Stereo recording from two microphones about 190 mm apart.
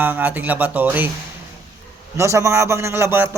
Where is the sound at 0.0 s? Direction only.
10° right (ahead or behind).